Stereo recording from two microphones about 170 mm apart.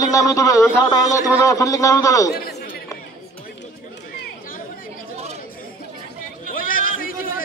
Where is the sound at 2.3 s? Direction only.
65° left (ahead or behind).